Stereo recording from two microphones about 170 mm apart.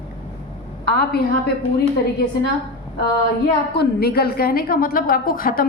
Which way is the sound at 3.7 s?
65° left (ahead or behind).